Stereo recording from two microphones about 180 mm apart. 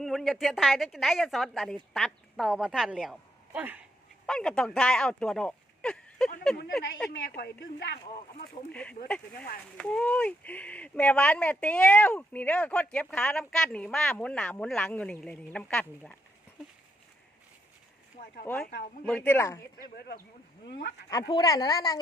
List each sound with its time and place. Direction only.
0.0 s a woman's voice: centre (ahead or behind)
4.3 s speech: 5° left (ahead or behind)
7.3 s speech: 60° left (ahead or behind)
8.7 s speech: 5° left (ahead or behind)
19.0 s speech: 10° left (ahead or behind)
20.0 s speech: 60° left (ahead or behind)
21.1 s a woman's voice: 25° left (ahead or behind)